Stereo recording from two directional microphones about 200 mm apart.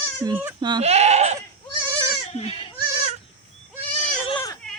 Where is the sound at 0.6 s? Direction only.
20° right (ahead or behind).